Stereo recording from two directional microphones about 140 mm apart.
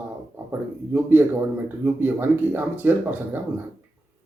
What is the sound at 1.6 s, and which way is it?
Speech, 15° right (ahead or behind).